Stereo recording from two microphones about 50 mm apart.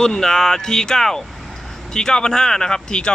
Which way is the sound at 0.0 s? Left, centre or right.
Centre.